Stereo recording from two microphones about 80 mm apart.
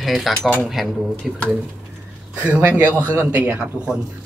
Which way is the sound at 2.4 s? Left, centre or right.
Centre.